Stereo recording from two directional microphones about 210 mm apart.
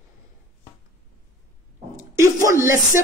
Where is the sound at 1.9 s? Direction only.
15° right (ahead or behind).